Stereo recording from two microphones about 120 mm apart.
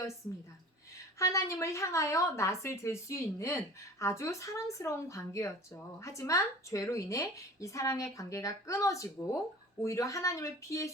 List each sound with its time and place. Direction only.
1.2 s speech: 25° left (ahead or behind)